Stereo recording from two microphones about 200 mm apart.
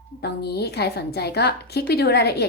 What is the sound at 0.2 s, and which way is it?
A woman's voice, 55° left (ahead or behind).